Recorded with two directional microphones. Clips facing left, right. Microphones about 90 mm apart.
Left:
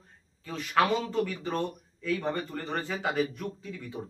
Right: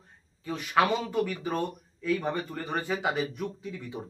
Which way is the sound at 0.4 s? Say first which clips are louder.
Right 1 dB; 15° right (ahead or behind).